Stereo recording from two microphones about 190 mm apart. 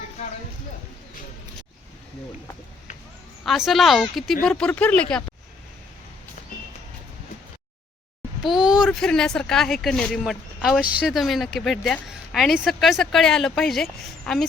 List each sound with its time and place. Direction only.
3.4 s a woman's voice: centre (ahead or behind)
6.5 s vehicle: 50° left (ahead or behind)
8.4 s a woman's voice: 5° right (ahead or behind)